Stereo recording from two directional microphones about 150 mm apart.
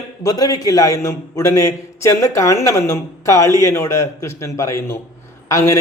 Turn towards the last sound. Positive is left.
turn(degrees=20)  # may be behind; listen again after turning